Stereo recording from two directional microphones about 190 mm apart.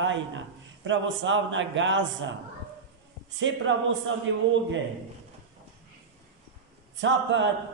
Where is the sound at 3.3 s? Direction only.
75° right (ahead or behind).